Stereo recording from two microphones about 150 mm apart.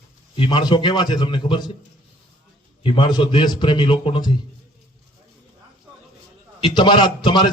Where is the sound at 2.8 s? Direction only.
35° left (ahead or behind).